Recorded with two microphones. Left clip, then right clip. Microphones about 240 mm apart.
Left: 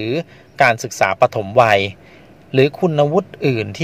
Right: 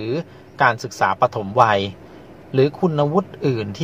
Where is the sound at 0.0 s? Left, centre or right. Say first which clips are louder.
Left 3 dB; left.